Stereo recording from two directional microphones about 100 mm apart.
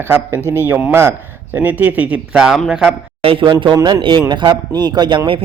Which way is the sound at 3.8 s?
50° right (ahead or behind).